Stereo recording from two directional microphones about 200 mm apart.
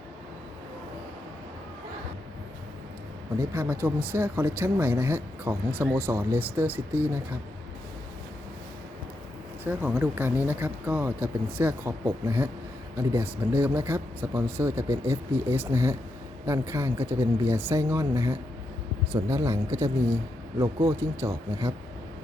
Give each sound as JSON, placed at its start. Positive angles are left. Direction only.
{"t": 3.3, "sound": "speech", "side_deg": -10}
{"t": 9.6, "sound": "speech", "side_deg": -10}